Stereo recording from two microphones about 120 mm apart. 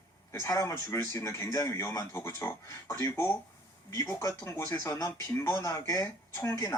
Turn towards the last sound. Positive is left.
turn(degrees=25)  # may be behind; listen again after turning